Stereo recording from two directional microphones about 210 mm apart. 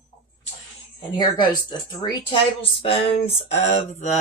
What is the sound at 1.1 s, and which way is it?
Speech, 20° left (ahead or behind).